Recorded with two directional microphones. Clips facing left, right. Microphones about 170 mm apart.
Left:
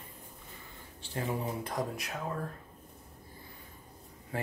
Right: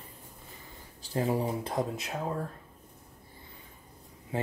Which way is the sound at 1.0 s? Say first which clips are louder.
Right 6 dB; 35° right (ahead or behind).